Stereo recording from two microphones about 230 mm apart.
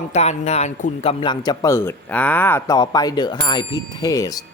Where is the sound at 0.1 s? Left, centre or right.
Left.